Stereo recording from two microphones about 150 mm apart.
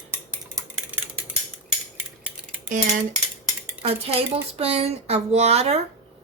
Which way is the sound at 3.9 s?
40° right (ahead or behind).